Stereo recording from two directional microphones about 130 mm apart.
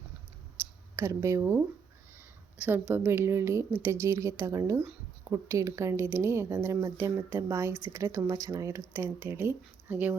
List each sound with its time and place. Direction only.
0.9 s a woman's voice: 20° right (ahead or behind)